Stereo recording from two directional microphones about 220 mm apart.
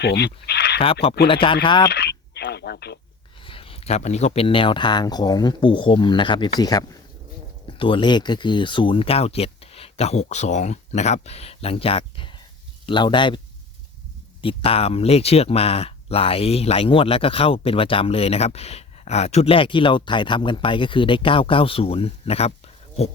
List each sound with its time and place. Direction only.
0.0 s speech: 50° left (ahead or behind)
1.3 s speech: 25° left (ahead or behind)
1.9 s a sound: 50° left (ahead or behind)
3.4 s speech: 25° left (ahead or behind)
14.4 s speech: 25° left (ahead or behind)